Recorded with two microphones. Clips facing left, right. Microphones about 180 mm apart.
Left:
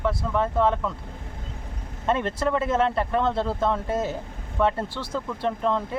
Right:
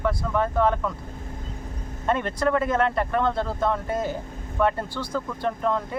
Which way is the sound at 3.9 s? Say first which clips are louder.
Even; 25° left (ahead or behind).